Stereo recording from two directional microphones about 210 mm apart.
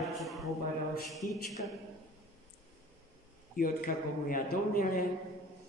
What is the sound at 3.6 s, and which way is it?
A man's voice, 45° left (ahead or behind).